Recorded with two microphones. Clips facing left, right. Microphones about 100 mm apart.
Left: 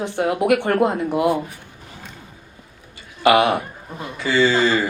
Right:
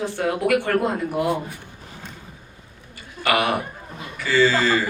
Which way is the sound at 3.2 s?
20° left (ahead or behind).